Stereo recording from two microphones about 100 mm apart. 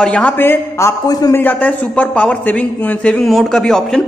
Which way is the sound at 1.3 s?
15° left (ahead or behind).